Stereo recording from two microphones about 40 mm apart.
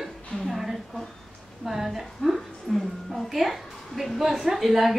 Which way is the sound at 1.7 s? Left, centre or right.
Centre.